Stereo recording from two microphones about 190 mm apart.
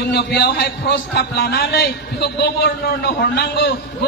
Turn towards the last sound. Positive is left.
turn(degrees=60)  # may be behind; listen again after turning